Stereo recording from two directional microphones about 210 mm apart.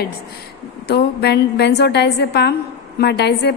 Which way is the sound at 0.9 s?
50° left (ahead or behind).